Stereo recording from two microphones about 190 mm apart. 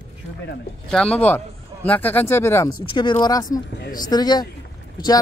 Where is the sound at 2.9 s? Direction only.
25° left (ahead or behind).